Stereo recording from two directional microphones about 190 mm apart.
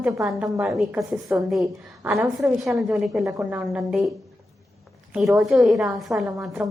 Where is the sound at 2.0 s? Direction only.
15° right (ahead or behind).